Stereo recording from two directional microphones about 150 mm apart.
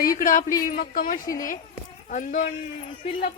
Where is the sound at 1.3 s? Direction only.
65° left (ahead or behind).